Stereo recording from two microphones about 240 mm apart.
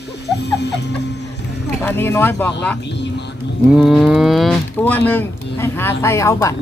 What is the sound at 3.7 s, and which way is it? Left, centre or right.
Speech, centre.